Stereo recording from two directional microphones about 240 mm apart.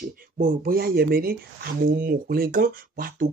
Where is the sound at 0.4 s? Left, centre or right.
Right.